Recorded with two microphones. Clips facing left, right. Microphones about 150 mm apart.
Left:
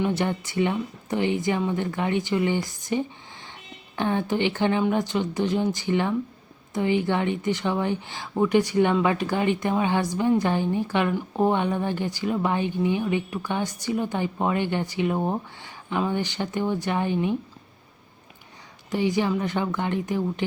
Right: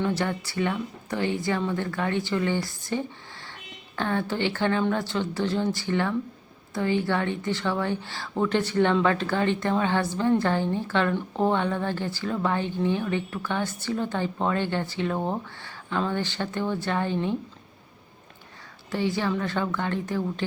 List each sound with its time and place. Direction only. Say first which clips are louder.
0.0 s speech: left 2 dB; 20° left (ahead or behind)
18.9 s speech: left 3 dB; 15° left (ahead or behind)